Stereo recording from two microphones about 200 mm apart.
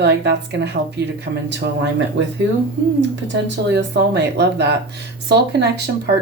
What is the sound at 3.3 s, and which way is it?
Speech, 60° right (ahead or behind).